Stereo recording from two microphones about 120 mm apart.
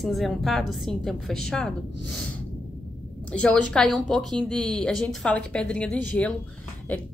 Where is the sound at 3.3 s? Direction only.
10° left (ahead or behind).